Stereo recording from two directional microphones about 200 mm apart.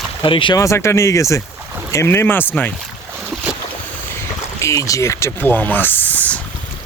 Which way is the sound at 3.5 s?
5° right (ahead or behind).